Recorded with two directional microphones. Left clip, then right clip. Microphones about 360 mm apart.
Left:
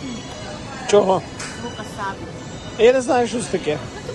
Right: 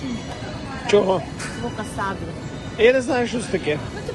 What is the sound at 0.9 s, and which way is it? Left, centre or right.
Speech, centre.